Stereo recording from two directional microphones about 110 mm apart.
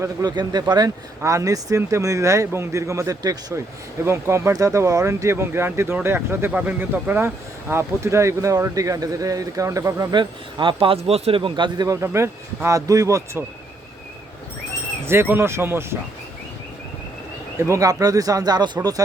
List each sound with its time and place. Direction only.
0.0 s speech: 35° right (ahead or behind)
1.2 s speech: 30° right (ahead or behind)
10.1 s speech: 45° right (ahead or behind)
11.9 s speech: 25° right (ahead or behind)
15.0 s speech: 20° right (ahead or behind)
17.6 s speech: 30° right (ahead or behind)